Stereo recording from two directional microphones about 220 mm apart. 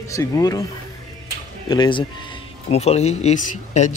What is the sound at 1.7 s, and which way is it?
Speech, 20° left (ahead or behind).